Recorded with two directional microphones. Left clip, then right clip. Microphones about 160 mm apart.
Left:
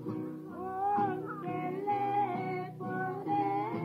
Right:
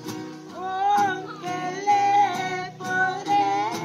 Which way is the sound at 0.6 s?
30° right (ahead or behind).